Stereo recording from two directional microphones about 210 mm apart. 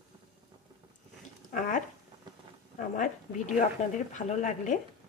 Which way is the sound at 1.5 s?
35° left (ahead or behind).